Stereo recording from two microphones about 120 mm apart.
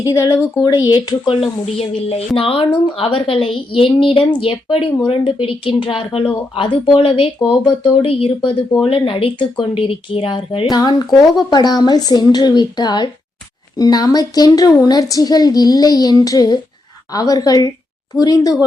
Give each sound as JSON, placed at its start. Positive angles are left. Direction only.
{"t": 0.0, "sound": "speech", "side_deg": 25}
{"t": 0.9, "sound": "a woman's voice", "side_deg": 45}
{"t": 2.0, "sound": "a woman's voice", "side_deg": 55}